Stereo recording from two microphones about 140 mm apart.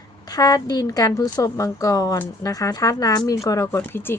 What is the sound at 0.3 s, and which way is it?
Speech, 25° left (ahead or behind).